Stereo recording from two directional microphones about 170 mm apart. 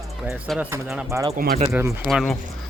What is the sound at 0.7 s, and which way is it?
Speech, 15° right (ahead or behind).